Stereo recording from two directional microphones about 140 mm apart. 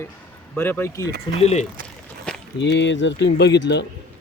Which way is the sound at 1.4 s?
50° left (ahead or behind).